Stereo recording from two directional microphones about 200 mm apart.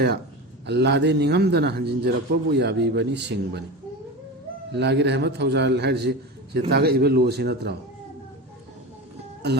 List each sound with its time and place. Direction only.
0.7 s a man's voice: 60° right (ahead or behind)
4.7 s a man's voice: 55° right (ahead or behind)
9.4 s a man's voice: 55° right (ahead or behind)